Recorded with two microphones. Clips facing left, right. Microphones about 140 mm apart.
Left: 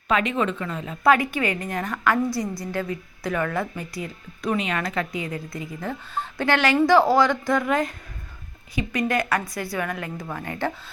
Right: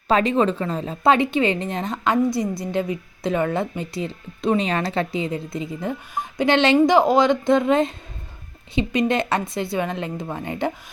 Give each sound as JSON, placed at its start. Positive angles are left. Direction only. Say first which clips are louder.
{"t": 0.1, "sound": "a woman's voice", "louder": "right 5 dB", "side_deg": -35}